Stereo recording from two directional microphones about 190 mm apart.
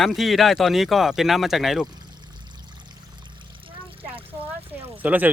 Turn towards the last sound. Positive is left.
turn(degrees=-10)  # may be behind; listen again after turning